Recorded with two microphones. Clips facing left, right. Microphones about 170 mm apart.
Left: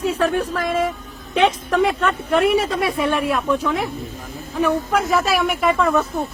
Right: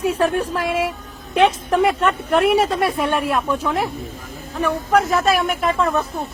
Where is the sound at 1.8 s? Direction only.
Centre (ahead or behind).